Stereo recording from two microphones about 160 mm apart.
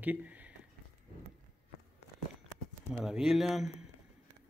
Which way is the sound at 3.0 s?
5° right (ahead or behind).